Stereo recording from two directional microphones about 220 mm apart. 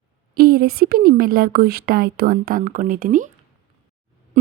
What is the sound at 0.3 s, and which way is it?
Speech, 45° right (ahead or behind).